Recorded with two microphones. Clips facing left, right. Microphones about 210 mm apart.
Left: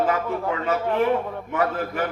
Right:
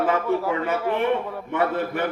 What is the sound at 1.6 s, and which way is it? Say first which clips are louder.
Speech: right 1 dB; 25° right (ahead or behind).